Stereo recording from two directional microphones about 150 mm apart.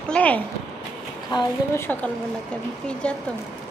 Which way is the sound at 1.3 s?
20° left (ahead or behind).